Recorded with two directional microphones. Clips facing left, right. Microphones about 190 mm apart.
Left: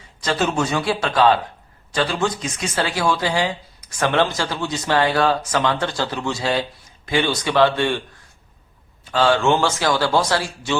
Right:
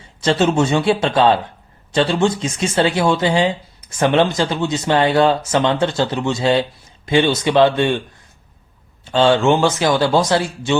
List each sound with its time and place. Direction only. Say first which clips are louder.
0.2 s speech: right 6 dB; 25° right (ahead or behind)
9.0 s speech: right 3 dB; 25° right (ahead or behind)